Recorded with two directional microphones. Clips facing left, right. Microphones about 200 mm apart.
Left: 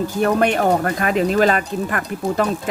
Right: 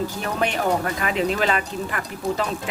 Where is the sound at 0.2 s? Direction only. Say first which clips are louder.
Left 10 dB; 50° left (ahead or behind).